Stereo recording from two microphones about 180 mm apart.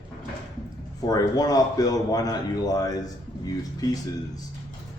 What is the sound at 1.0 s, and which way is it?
A man's voice, 20° left (ahead or behind).